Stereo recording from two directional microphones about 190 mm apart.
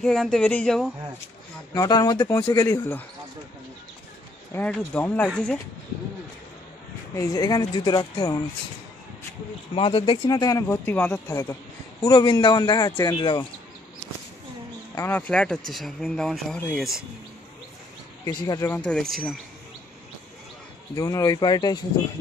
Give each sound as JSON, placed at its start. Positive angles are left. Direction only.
{"t": 0.0, "sound": "speech", "side_deg": 0}
{"t": 1.7, "sound": "speech", "side_deg": 20}
{"t": 4.6, "sound": "speech", "side_deg": 5}
{"t": 7.2, "sound": "speech", "side_deg": 20}
{"t": 9.8, "sound": "speech", "side_deg": 30}
{"t": 11.2, "sound": "speech", "side_deg": 20}
{"t": 15.0, "sound": "speech", "side_deg": 10}
{"t": 18.2, "sound": "speech", "side_deg": 20}
{"t": 18.8, "sound": "speech", "side_deg": 5}
{"t": 20.9, "sound": "speech", "side_deg": 20}